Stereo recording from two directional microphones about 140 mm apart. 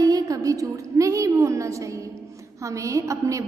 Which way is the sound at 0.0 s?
25° right (ahead or behind).